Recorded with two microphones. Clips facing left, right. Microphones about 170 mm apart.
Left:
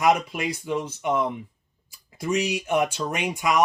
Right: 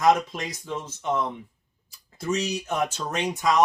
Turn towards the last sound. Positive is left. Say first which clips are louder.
# right 1 dB
turn(degrees=10)  # may be behind; listen again after turning